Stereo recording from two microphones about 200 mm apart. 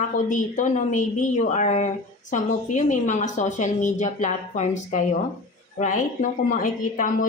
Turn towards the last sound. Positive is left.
turn(degrees=40)  # may be behind; listen again after turning